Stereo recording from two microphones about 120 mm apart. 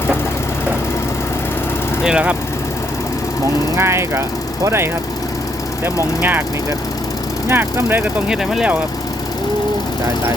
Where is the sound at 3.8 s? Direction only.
20° right (ahead or behind).